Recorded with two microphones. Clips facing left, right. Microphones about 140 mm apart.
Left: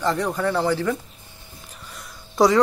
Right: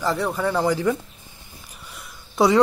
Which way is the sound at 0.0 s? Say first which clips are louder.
Even; 5° right (ahead or behind).